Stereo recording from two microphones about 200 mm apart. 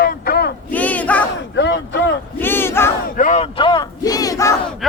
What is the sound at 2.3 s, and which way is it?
Battle cry, 10° left (ahead or behind).